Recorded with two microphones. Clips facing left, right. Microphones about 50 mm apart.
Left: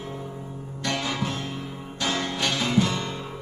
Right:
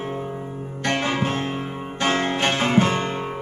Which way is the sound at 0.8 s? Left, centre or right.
Right.